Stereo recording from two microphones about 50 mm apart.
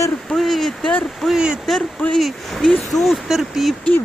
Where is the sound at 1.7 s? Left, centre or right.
Centre.